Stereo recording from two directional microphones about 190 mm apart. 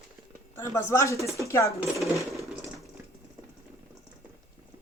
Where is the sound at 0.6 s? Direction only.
15° left (ahead or behind).